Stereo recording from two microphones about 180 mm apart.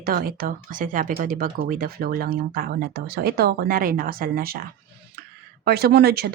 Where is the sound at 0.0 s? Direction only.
55° right (ahead or behind).